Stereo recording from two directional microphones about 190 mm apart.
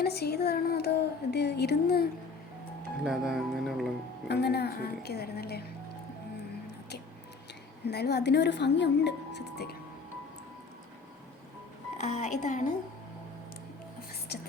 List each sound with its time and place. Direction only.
0.0 s speech: 55° left (ahead or behind)
3.0 s speech: centre (ahead or behind)
4.3 s speech: 60° left (ahead or behind)
7.9 s speech: 60° left (ahead or behind)
11.9 s speech: 35° left (ahead or behind)